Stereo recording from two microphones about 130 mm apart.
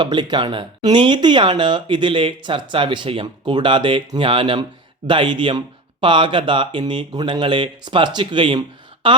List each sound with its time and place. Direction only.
0.0 s speech: 35° right (ahead or behind)